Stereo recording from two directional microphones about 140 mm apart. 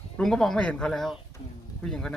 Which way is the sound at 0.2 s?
Centre (ahead or behind).